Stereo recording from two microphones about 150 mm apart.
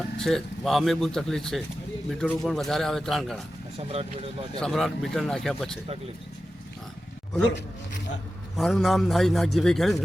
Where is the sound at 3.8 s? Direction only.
40° right (ahead or behind).